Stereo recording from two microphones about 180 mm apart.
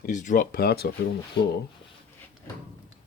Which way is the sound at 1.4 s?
70° left (ahead or behind).